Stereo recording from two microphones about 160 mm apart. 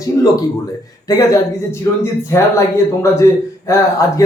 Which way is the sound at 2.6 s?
15° left (ahead or behind).